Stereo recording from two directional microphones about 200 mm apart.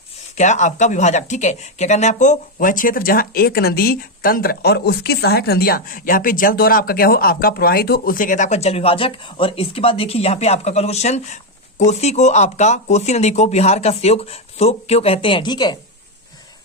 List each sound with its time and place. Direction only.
0.3 s speech: 35° left (ahead or behind)